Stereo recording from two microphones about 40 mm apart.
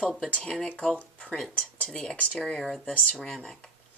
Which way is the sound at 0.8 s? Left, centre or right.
Left.